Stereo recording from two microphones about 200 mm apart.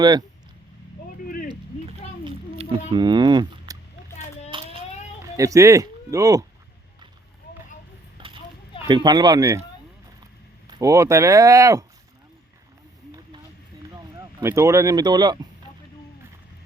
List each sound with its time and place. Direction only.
2.9 s speech: 20° right (ahead or behind)
4.5 s a sound: 25° right (ahead or behind)
5.2 s speech: 15° right (ahead or behind)
8.2 s clip-clop: 25° right (ahead or behind)
8.8 s speech: 20° right (ahead or behind)
10.7 s speech: 15° right (ahead or behind)
13.9 s speech: 15° right (ahead or behind)